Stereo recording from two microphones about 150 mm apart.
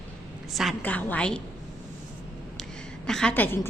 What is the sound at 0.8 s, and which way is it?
Speech, 10° left (ahead or behind).